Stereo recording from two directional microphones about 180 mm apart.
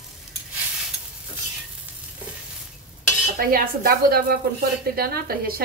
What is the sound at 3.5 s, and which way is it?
A woman's voice, 55° right (ahead or behind).